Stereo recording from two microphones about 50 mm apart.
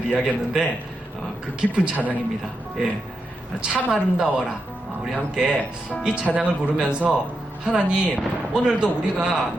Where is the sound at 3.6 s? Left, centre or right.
Centre.